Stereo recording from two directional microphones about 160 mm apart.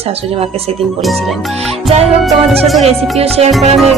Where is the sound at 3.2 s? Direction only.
40° right (ahead or behind).